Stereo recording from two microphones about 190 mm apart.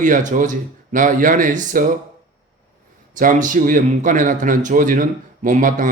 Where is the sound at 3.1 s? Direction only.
45° right (ahead or behind).